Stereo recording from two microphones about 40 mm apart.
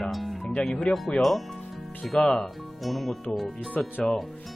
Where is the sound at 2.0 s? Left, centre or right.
Centre.